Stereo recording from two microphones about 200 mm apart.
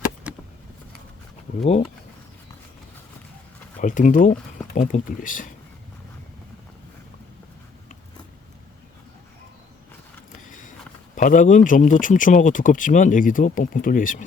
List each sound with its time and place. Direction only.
0.3 s a sound: 5° right (ahead or behind)
3.8 s speech: 40° left (ahead or behind)
11.1 s speech: 40° left (ahead or behind)